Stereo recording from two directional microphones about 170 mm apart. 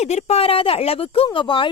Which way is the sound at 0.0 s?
40° left (ahead or behind).